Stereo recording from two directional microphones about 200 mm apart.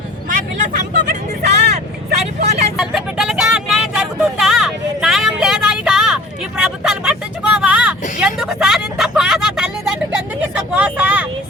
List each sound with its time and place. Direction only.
0.3 s vehicle: 40° right (ahead or behind)
2.7 s vehicle: centre (ahead or behind)
7.6 s a sound: 5° right (ahead or behind)
8.2 s vehicle: 5° right (ahead or behind)